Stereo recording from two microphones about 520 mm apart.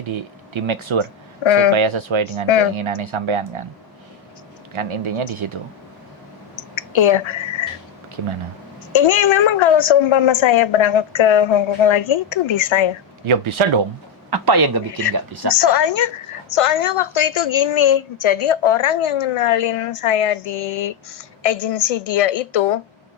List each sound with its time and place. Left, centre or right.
0.0 s speech: right
1.5 s a woman's voice: left
1.7 s speech: right
2.5 s a woman's voice: left
3.0 s speech: right
4.7 s speech: right
6.7 s a sound: left
8.9 s a woman's voice: left
13.2 s speech: right
14.3 s a man's voice: right
15.4 s a woman's voice: left